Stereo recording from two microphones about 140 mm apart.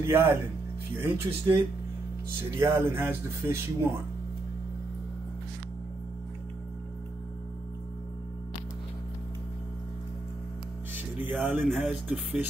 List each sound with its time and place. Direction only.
0.0 s speech: 20° right (ahead or behind)
11.0 s music: 15° right (ahead or behind)
11.8 s speech: 10° right (ahead or behind)